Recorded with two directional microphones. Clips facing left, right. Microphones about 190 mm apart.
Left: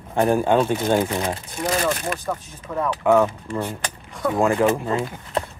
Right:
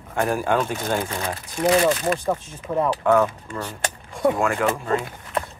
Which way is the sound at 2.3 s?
20° right (ahead or behind).